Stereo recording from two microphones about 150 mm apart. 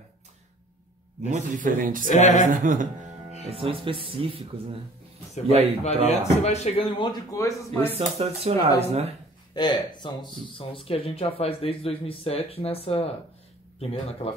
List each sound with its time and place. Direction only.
1.3 s a man's voice: 65° right (ahead or behind)
2.0 s speech: 55° left (ahead or behind)
2.5 s a man's voice: 60° right (ahead or behind)
3.4 s speech: 40° right (ahead or behind)
5.5 s speech: 45° right (ahead or behind)
6.0 s speech: 45° left (ahead or behind)
7.0 s speech: 25° left (ahead or behind)
7.9 s speech: 40° right (ahead or behind)
9.6 s speech: 30° left (ahead or behind)